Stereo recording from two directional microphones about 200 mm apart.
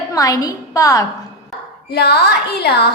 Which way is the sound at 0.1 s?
20° left (ahead or behind).